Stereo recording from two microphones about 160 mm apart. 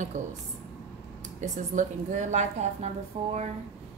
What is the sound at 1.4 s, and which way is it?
A woman's voice, 50° right (ahead or behind).